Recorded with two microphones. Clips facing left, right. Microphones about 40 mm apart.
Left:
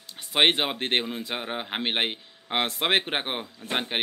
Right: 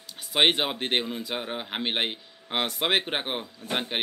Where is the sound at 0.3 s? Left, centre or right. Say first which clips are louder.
Left 1 dB; centre.